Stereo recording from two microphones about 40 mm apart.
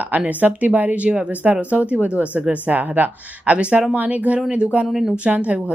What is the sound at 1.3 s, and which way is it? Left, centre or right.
A woman's voice, right.